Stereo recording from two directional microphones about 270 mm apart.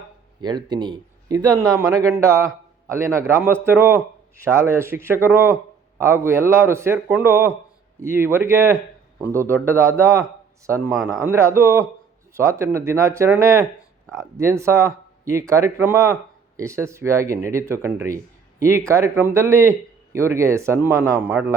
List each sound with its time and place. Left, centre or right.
0.4 s a man's voice: centre